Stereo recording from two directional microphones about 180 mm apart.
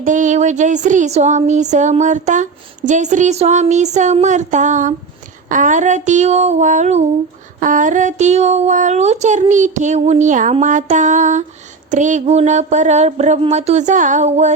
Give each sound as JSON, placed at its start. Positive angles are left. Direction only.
{"t": 0.0, "sound": "speech", "side_deg": -45}